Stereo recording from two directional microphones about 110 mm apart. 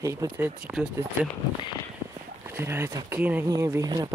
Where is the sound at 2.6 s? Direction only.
25° right (ahead or behind).